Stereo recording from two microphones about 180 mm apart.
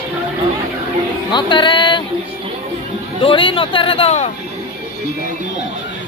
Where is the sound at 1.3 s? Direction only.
25° left (ahead or behind).